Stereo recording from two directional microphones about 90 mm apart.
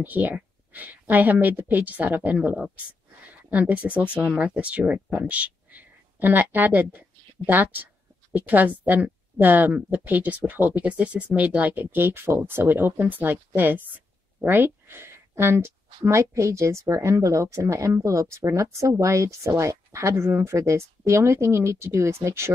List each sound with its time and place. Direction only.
0.0 s speech: 20° right (ahead or behind)